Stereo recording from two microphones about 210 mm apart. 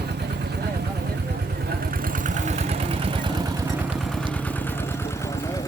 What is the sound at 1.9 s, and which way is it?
Vehicle, 40° right (ahead or behind).